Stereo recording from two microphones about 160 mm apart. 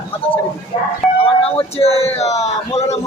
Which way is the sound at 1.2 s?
35° left (ahead or behind).